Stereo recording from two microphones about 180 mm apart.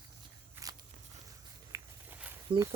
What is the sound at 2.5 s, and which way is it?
Speech, 20° right (ahead or behind).